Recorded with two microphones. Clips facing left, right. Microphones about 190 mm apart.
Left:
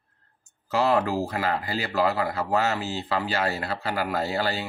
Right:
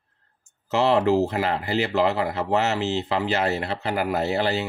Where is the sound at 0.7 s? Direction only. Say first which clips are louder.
Right 3 dB; 25° right (ahead or behind).